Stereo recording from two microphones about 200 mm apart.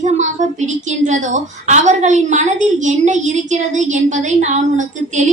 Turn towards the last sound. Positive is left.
turn(degrees=-35)  # may be behind; listen again after turning